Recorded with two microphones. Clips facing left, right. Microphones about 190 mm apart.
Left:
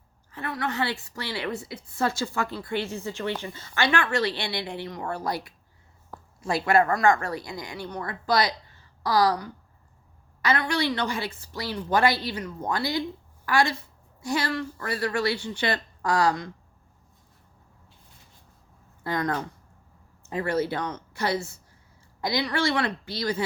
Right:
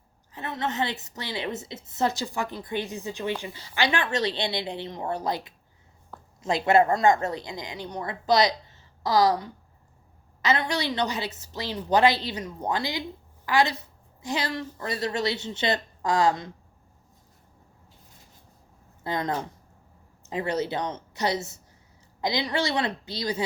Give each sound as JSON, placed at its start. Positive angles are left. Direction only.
{"t": 0.3, "sound": "a woman's voice", "side_deg": -20}
{"t": 19.0, "sound": "a woman's voice", "side_deg": -25}